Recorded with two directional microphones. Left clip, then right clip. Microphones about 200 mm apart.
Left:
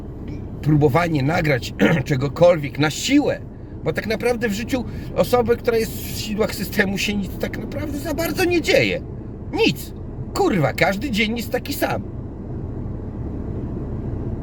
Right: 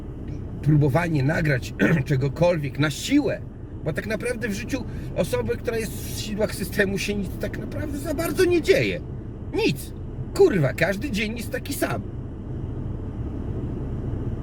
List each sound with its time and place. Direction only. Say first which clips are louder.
0.6 s a woman's voice: left 5 dB; 25° left (ahead or behind)